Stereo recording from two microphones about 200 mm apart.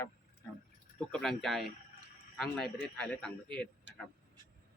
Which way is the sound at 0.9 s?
5° left (ahead or behind).